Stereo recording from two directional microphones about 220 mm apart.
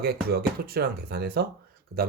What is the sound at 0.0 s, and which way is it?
Speech, 45° right (ahead or behind).